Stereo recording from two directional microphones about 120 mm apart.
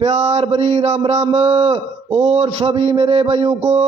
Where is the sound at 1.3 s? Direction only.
55° right (ahead or behind).